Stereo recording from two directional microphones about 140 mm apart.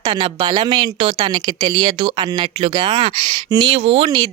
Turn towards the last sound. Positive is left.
turn(degrees=-35)  # may be behind; listen again after turning